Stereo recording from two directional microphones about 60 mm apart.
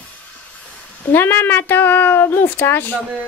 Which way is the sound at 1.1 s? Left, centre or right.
Left.